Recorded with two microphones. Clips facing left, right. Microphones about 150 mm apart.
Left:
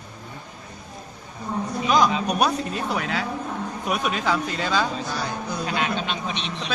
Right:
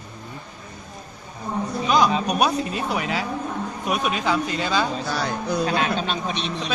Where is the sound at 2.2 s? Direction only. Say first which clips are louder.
Right 1 dB; 5° right (ahead or behind).